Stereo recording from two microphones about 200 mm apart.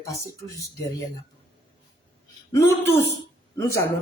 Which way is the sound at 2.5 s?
15° left (ahead or behind).